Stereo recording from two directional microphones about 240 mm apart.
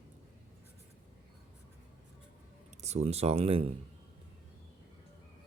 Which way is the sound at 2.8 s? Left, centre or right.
Right.